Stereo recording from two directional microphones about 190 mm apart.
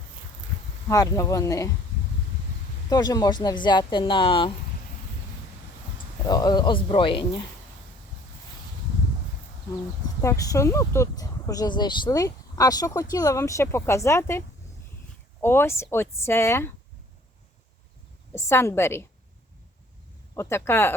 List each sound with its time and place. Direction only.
0.9 s speech: 20° left (ahead or behind)
2.9 s speech: 20° left (ahead or behind)
6.2 s speech: 20° left (ahead or behind)
10.2 s speech: 15° left (ahead or behind)
18.3 s speech: 15° left (ahead or behind)
20.3 s speech: 15° left (ahead or behind)